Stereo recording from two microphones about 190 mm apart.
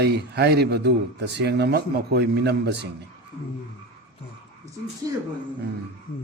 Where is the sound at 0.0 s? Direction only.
60° right (ahead or behind).